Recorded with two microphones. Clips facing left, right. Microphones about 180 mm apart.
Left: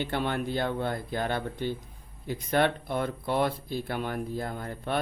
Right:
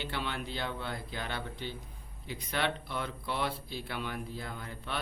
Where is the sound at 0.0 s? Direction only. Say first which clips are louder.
Left 8 dB; 50° left (ahead or behind).